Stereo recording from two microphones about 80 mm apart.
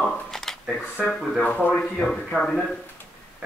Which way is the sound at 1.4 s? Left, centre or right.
Left.